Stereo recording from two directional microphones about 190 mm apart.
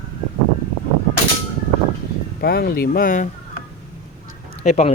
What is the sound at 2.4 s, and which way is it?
Speech, 55° left (ahead or behind).